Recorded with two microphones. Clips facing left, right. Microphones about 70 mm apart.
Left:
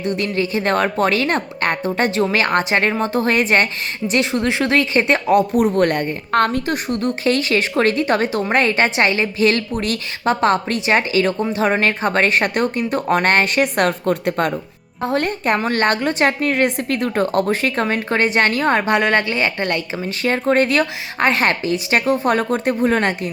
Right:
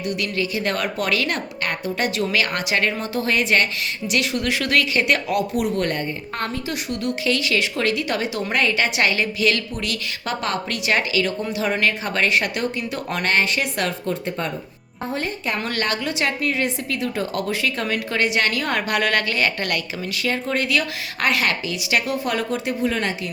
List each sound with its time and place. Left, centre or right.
0.0 s a woman's voice: left
6.9 s a woman's voice: left
15.5 s a woman's voice: left
20.2 s a woman's voice: left